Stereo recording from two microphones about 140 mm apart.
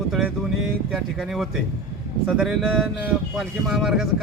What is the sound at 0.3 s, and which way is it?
Speech, 5° right (ahead or behind).